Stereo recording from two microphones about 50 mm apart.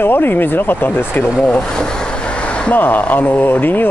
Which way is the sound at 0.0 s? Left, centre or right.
Left.